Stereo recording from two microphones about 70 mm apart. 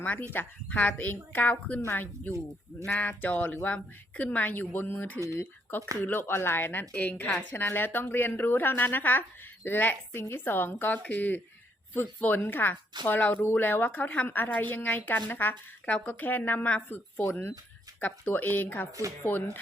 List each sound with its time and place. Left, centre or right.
0.0 s a woman's voice: left
18.9 s speech: right